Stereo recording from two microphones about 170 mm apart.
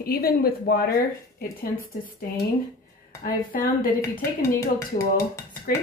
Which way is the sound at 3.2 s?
55° left (ahead or behind).